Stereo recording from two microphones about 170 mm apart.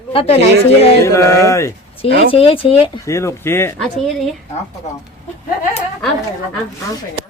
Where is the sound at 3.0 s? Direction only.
15° left (ahead or behind).